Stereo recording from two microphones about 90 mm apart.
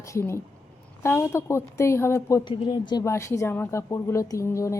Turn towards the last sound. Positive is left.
turn(degrees=35)  # may be behind; listen again after turning